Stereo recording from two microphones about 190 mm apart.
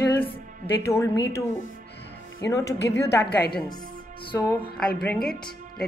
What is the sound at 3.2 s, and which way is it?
Speech, 55° left (ahead or behind).